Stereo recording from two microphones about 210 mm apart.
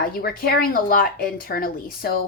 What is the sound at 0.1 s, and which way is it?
A woman's voice, 45° left (ahead or behind).